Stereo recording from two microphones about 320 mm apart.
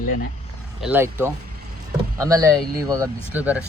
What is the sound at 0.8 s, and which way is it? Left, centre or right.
Speech, centre.